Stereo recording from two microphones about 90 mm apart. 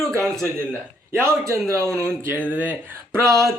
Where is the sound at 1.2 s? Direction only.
30° right (ahead or behind).